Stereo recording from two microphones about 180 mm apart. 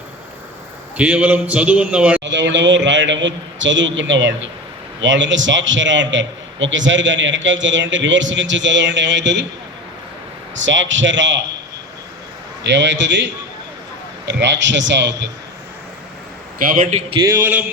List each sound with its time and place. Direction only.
0.9 s a man's voice: 5° right (ahead or behind)
2.2 s a man's voice: 90° right
10.7 s a man's voice: 90° right
12.6 s a man's voice: 80° right
16.6 s a man's voice: 45° right (ahead or behind)
17.2 s a man's voice: 15° right (ahead or behind)